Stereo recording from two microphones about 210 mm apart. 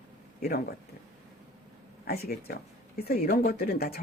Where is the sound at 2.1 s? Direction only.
45° left (ahead or behind).